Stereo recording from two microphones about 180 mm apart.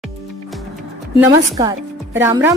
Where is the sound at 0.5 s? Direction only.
Centre (ahead or behind).